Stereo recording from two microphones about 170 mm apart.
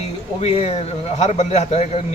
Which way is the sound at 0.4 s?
40° left (ahead or behind).